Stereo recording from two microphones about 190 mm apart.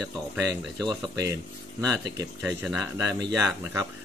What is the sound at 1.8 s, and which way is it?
Speech, 20° right (ahead or behind).